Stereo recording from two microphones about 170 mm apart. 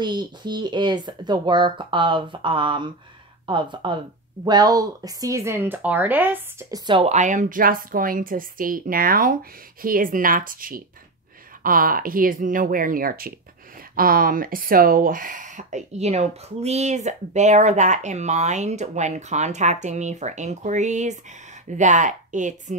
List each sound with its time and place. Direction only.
0.0 s speech: 25° right (ahead or behind)
6.9 s a woman's voice: 35° right (ahead or behind)